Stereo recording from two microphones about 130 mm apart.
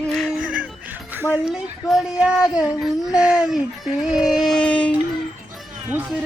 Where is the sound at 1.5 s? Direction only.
5° right (ahead or behind).